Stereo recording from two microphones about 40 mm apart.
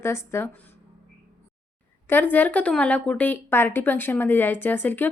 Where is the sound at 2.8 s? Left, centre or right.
Left.